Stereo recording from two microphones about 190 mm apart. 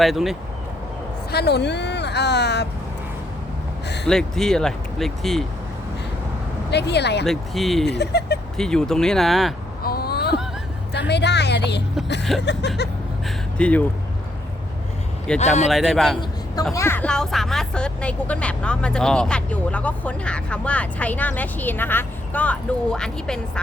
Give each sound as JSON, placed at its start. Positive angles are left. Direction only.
{"t": 0.0, "sound": "speech", "side_deg": 0}
{"t": 1.3, "sound": "speech", "side_deg": 60}
{"t": 4.0, "sound": "speech", "side_deg": 5}
{"t": 6.7, "sound": "speech", "side_deg": 60}
{"t": 7.3, "sound": "speech", "side_deg": 0}
{"t": 7.9, "sound": "speech", "side_deg": 60}
{"t": 8.5, "sound": "speech", "side_deg": 5}
{"t": 9.8, "sound": "a sound", "side_deg": 55}
{"t": 12.4, "sound": "speech", "side_deg": 65}
{"t": 13.2, "sound": "a sound", "side_deg": 5}
{"t": 15.4, "sound": "speech", "side_deg": 35}
{"t": 15.7, "sound": "speech", "side_deg": 0}
{"t": 16.7, "sound": "speech", "side_deg": 10}